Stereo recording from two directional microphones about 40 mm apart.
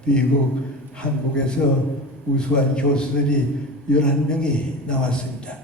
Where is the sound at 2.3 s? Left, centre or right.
Left.